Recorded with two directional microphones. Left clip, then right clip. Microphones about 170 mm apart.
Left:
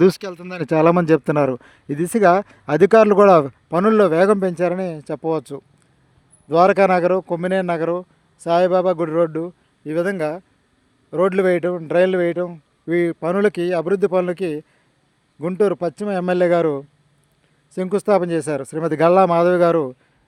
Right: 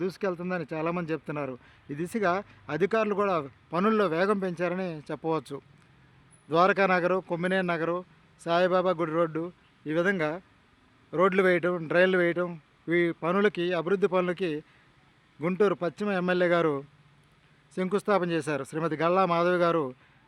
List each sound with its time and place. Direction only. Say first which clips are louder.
0.0 s speech: left 16 dB; 90° left
0.3 s speech: even; centre (ahead or behind)
0.6 s speech: left 16 dB; 75° left (ahead or behind)
1.5 s speech: left 12 dB; 55° left (ahead or behind); by 16.8 s 35° left (ahead or behind)
17.9 s speech: left 9 dB; 35° left (ahead or behind)
18.9 s speech: left 11 dB; 50° left (ahead or behind)